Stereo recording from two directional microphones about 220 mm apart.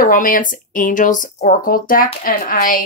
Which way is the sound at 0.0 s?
40° left (ahead or behind).